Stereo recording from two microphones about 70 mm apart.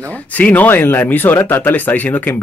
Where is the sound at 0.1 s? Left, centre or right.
Left.